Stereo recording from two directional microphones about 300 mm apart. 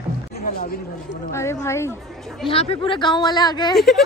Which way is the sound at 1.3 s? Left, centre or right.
Centre.